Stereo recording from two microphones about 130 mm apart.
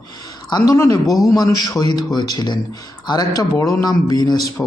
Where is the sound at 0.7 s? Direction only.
30° left (ahead or behind).